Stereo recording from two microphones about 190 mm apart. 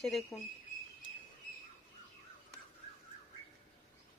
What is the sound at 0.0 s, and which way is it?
Speech, centre (ahead or behind).